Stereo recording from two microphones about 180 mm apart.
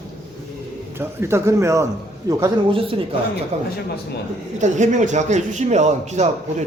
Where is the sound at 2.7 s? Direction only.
30° right (ahead or behind).